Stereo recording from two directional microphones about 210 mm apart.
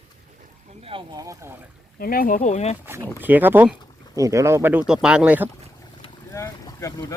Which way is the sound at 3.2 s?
10° right (ahead or behind).